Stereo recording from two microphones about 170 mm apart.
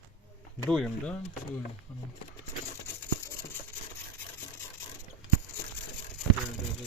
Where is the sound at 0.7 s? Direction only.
Centre (ahead or behind).